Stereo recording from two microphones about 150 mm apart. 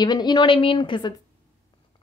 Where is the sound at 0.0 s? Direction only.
30° left (ahead or behind).